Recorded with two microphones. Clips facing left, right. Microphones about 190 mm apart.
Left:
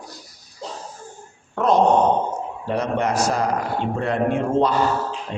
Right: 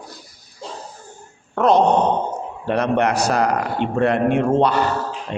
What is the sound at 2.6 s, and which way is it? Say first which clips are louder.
Speech: right 4 dB; 65° right (ahead or behind).